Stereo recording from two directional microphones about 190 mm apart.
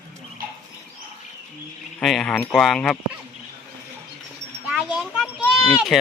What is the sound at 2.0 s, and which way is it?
Speech, centre (ahead or behind).